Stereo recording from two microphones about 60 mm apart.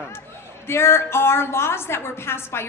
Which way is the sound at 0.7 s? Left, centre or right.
Left.